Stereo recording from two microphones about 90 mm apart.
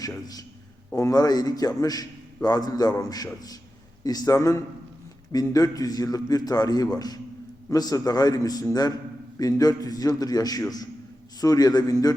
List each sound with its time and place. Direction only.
0.0 s a man's voice: 45° left (ahead or behind)
4.4 s a man's voice: 35° left (ahead or behind)
5.3 s a man's voice: 45° left (ahead or behind)